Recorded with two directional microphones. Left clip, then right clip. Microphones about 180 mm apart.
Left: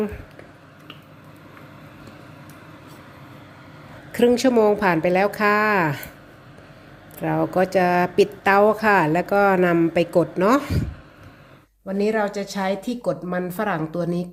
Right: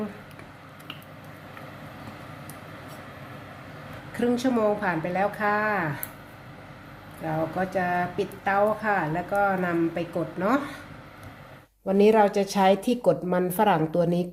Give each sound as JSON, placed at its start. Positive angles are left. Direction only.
{"t": 4.3, "sound": "speech", "side_deg": 35}
{"t": 7.3, "sound": "speech", "side_deg": 50}
{"t": 11.9, "sound": "a woman's voice", "side_deg": -15}